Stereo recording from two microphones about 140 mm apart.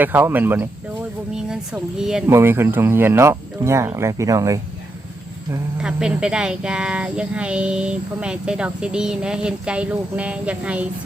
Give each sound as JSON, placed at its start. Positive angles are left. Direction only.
{"t": 0.0, "sound": "speech", "side_deg": -15}
{"t": 1.3, "sound": "speech", "side_deg": -5}
{"t": 2.3, "sound": "speech", "side_deg": -15}
{"t": 5.7, "sound": "speech", "side_deg": -5}